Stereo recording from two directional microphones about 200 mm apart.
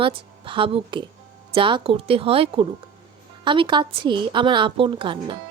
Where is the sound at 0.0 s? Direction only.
25° right (ahead or behind).